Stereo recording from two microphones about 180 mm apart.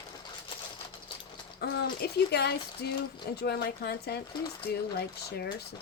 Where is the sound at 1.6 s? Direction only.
60° left (ahead or behind).